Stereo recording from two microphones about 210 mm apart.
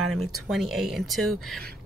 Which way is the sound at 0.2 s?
Centre (ahead or behind).